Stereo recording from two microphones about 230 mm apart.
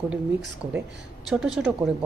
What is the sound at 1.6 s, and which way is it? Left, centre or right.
Speech, centre.